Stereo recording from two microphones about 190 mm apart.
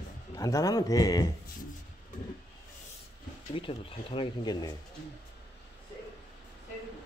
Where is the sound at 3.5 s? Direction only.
25° left (ahead or behind).